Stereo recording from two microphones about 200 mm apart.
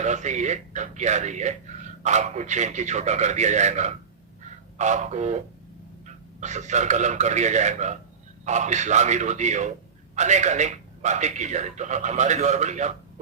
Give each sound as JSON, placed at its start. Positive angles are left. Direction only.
{"t": 0.0, "sound": "a man's voice", "side_deg": -35}